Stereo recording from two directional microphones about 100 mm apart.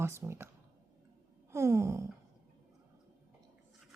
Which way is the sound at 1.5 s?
30° right (ahead or behind).